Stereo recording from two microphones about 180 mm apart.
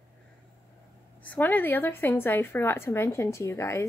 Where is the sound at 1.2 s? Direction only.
10° left (ahead or behind).